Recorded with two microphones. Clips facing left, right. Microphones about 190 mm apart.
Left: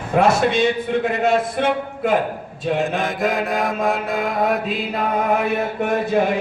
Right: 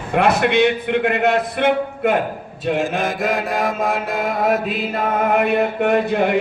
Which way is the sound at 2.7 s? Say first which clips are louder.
Even; centre (ahead or behind).